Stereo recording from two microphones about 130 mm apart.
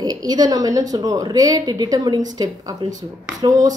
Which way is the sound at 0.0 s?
30° right (ahead or behind).